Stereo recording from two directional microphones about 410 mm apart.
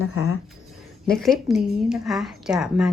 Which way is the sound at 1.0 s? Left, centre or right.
Centre.